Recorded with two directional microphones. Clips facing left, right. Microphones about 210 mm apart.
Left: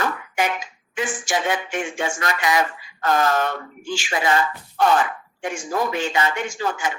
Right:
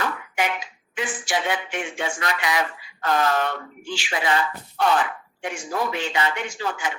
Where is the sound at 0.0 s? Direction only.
45° left (ahead or behind).